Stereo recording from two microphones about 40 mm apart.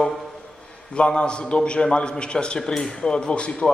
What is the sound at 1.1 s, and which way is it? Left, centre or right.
A man's voice, left.